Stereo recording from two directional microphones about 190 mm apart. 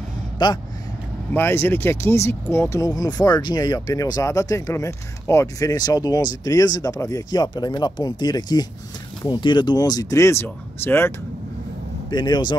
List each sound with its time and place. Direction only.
0.4 s speech: 25° left (ahead or behind)
1.3 s speech: 10° left (ahead or behind)
12.1 s speech: 25° left (ahead or behind)